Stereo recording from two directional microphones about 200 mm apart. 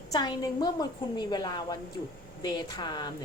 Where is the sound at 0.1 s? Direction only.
20° left (ahead or behind).